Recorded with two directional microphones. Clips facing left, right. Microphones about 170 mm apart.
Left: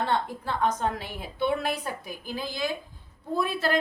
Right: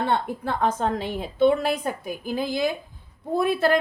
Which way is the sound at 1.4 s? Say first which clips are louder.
Right 7 dB; 50° right (ahead or behind).